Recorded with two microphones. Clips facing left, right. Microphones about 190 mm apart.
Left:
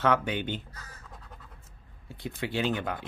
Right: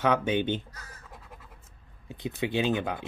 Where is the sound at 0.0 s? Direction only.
20° right (ahead or behind).